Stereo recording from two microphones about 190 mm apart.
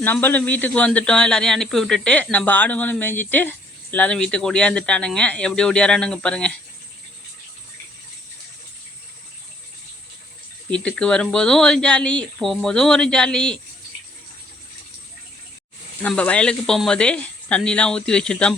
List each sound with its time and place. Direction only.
0.0 s speech: 10° left (ahead or behind)
10.7 s speech: 5° left (ahead or behind)
16.0 s speech: 5° left (ahead or behind)